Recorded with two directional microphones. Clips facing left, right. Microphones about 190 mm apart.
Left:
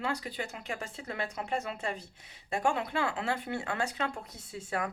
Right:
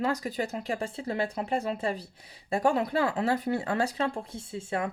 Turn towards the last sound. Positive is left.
turn(degrees=-25)  # may be behind; listen again after turning